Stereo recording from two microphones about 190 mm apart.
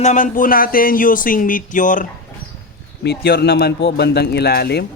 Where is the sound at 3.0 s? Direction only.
55° left (ahead or behind).